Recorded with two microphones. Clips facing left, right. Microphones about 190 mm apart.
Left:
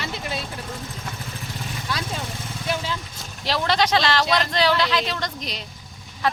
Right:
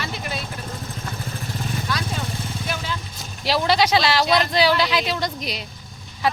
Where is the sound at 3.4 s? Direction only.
10° right (ahead or behind).